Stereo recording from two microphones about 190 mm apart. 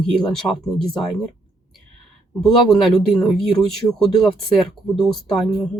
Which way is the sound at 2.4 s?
Centre (ahead or behind).